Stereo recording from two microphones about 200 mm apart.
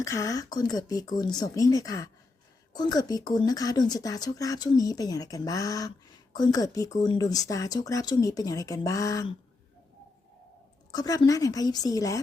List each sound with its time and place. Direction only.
0.0 s a woman's voice: 15° left (ahead or behind)
10.9 s a woman's voice: 20° left (ahead or behind)